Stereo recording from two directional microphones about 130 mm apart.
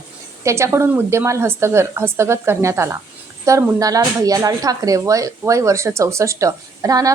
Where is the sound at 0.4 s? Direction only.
20° right (ahead or behind).